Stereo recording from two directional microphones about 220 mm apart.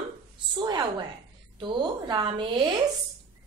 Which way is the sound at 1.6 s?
20° right (ahead or behind).